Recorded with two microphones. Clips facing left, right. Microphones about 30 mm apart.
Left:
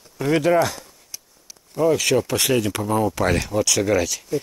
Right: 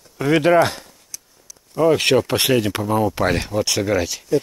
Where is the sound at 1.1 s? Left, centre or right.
Left.